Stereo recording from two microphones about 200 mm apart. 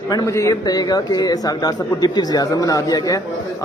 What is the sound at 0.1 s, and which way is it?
A man's voice, 15° left (ahead or behind).